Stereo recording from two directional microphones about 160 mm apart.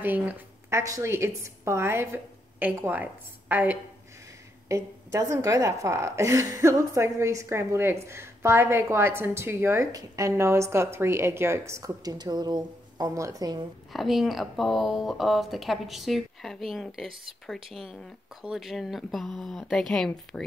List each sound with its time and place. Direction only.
0.0 s a woman's voice: 10° right (ahead or behind)
13.9 s speech: centre (ahead or behind)